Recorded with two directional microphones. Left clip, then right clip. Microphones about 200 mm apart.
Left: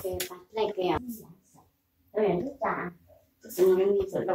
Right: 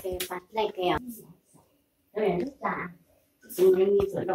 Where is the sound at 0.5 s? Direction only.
45° right (ahead or behind).